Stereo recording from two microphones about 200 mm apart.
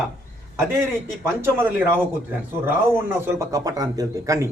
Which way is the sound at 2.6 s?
10° right (ahead or behind).